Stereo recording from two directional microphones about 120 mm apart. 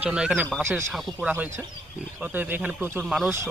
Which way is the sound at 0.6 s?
20° right (ahead or behind).